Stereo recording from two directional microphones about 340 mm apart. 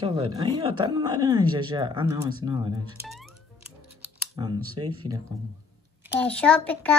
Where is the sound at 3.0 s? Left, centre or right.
Centre.